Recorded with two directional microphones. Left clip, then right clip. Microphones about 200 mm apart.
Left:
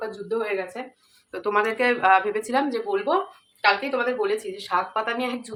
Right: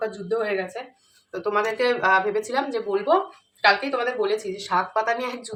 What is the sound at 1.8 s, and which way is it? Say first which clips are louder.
Speech: left 1 dB; 15° left (ahead or behind).